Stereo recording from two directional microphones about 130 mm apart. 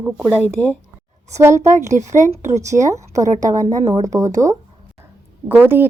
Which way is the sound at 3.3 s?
75° right (ahead or behind).